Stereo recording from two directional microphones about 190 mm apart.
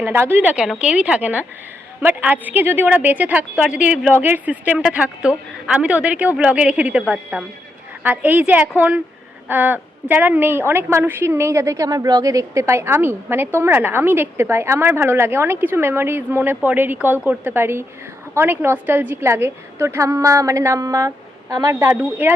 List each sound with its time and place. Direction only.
0.0 s a woman's voice: 10° right (ahead or behind)